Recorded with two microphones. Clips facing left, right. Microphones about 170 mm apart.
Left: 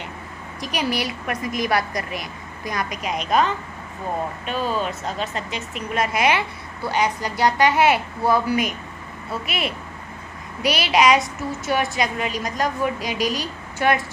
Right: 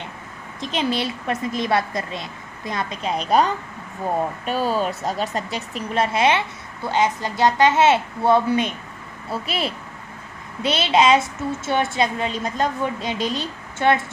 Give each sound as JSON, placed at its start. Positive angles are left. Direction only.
{"t": 0.6, "sound": "a woman's voice", "side_deg": -25}
{"t": 4.6, "sound": "a woman's voice", "side_deg": -40}